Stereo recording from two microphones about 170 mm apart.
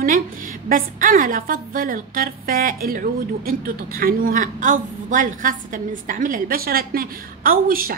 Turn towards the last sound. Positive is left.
turn(degrees=-60)  # may be behind; listen again after turning